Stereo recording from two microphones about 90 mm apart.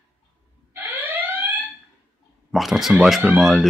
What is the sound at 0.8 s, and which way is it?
Alarm, 20° right (ahead or behind).